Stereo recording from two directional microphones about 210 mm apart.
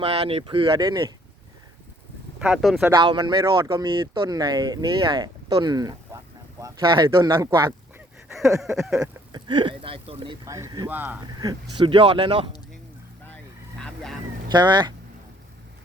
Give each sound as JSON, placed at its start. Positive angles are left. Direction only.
{"t": 0.0, "sound": "speech", "side_deg": -30}
{"t": 2.4, "sound": "speech", "side_deg": -5}
{"t": 2.9, "sound": "speech", "side_deg": -20}
{"t": 8.6, "sound": "speech", "side_deg": -5}
{"t": 9.3, "sound": "speech", "side_deg": -20}
{"t": 10.4, "sound": "speech", "side_deg": -15}
{"t": 13.2, "sound": "vehicle", "side_deg": 5}
{"t": 14.5, "sound": "speech", "side_deg": -20}